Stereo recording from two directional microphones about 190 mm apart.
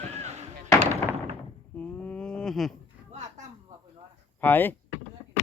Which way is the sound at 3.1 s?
40° right (ahead or behind).